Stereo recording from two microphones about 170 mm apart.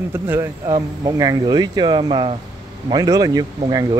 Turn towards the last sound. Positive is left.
turn(degrees=-20)  # may be behind; listen again after turning